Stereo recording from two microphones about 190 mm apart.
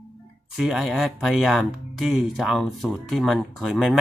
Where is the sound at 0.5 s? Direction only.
Centre (ahead or behind).